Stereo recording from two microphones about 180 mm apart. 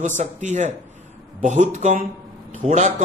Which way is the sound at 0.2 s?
40° right (ahead or behind).